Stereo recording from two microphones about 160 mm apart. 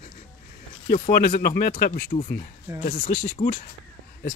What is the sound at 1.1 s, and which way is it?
Speech, 70° left (ahead or behind).